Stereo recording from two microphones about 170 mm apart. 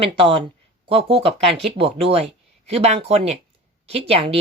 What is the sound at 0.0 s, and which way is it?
A woman's voice, 35° right (ahead or behind).